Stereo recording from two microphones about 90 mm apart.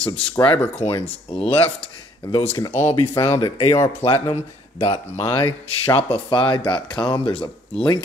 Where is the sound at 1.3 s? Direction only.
90° left.